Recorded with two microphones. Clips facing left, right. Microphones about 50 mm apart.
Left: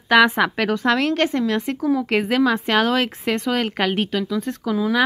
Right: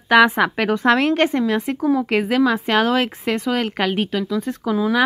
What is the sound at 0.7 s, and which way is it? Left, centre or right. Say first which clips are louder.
A woman's voice: right 3 dB; right.